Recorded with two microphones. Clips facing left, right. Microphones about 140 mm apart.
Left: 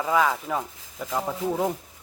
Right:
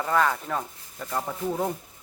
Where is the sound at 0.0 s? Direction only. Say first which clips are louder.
Left 1 dB; 5° left (ahead or behind).